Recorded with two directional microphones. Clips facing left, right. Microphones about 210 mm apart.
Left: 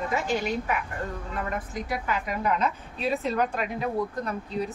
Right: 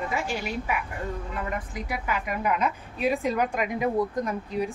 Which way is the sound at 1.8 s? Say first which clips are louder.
Left 3 dB; 10° right (ahead or behind).